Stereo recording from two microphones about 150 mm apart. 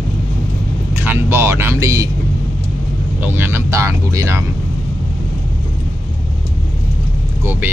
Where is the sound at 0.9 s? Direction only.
15° right (ahead or behind).